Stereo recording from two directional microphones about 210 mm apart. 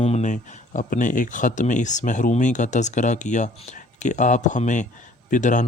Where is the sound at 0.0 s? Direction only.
30° left (ahead or behind).